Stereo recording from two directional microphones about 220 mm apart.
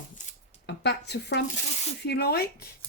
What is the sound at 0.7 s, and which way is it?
Speech, 50° left (ahead or behind).